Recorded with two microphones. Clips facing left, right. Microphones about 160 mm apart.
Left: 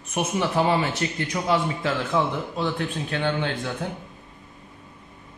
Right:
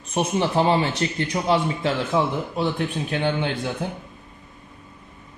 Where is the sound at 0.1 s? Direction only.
30° right (ahead or behind).